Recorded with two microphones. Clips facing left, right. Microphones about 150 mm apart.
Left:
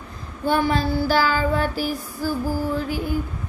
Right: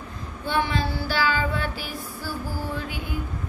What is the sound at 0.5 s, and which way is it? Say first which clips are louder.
Child singing: left 5 dB; 40° left (ahead or behind).